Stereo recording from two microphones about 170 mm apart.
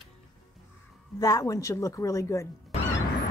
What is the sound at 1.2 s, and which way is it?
Speech, 20° left (ahead or behind).